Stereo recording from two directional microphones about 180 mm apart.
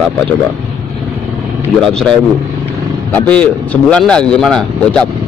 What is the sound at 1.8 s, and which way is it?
A man's voice, 5° left (ahead or behind).